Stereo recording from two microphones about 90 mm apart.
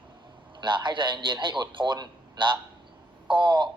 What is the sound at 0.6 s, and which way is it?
A man's voice, 60° right (ahead or behind).